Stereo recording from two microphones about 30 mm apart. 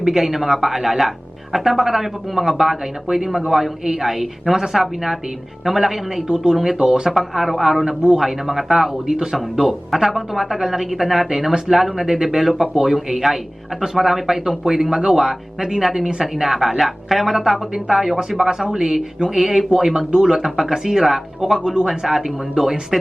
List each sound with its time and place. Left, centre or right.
0.0 s speech: centre
6.2 s speech: right
7.1 s speech: centre